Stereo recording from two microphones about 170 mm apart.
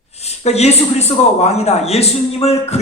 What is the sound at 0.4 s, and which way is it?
A man's voice, 40° left (ahead or behind).